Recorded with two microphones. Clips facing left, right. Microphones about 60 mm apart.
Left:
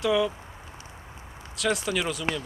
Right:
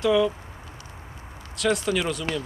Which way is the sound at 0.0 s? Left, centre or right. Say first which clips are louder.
Right 3 dB; centre.